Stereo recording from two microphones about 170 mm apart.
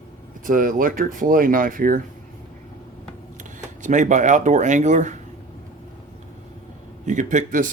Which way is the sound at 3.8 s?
45° right (ahead or behind).